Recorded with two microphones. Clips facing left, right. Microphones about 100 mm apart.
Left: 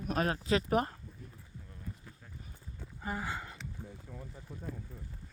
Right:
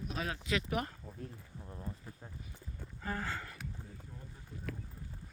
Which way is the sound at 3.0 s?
15° left (ahead or behind).